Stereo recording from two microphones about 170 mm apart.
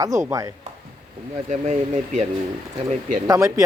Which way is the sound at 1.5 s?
45° right (ahead or behind).